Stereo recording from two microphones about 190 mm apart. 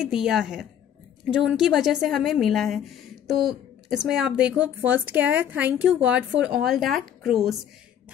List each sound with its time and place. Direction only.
0.0 s speech: centre (ahead or behind)